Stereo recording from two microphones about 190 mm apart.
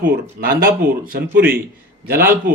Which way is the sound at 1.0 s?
50° right (ahead or behind).